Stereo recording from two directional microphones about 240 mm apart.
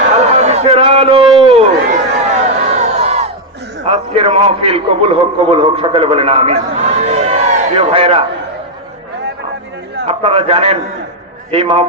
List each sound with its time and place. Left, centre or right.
0.1 s a sound: right
3.8 s a man's voice: right
10.1 s a man's voice: right